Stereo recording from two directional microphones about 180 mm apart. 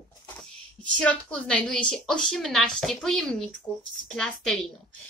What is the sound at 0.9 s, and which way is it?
Speech, 5° left (ahead or behind).